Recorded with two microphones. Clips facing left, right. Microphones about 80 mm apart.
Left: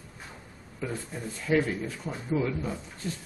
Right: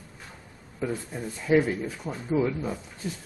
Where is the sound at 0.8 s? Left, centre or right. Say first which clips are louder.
Right 4 dB; centre.